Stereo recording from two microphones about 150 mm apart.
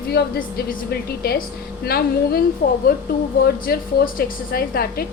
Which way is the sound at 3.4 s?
90° left.